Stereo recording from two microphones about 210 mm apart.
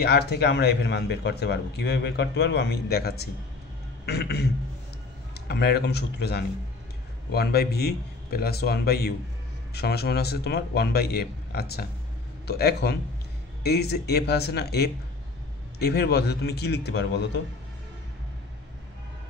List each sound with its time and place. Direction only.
0.0 s speech: 50° left (ahead or behind)